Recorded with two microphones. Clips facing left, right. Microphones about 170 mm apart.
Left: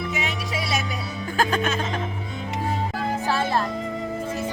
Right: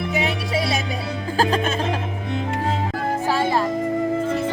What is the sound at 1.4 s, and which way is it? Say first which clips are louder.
Music: right 2 dB; 30° right (ahead or behind).